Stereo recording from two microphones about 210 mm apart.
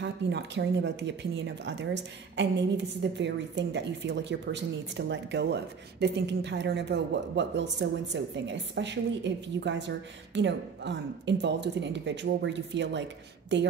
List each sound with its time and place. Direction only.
0.0 s a woman's voice: 55° right (ahead or behind)